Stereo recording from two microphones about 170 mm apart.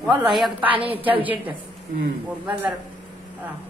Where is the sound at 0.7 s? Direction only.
35° right (ahead or behind).